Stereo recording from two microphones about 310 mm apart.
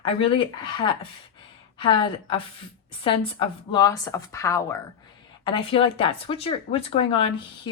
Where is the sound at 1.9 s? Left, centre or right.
Centre.